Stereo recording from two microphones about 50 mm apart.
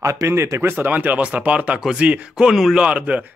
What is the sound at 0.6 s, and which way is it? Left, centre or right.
Speech, right.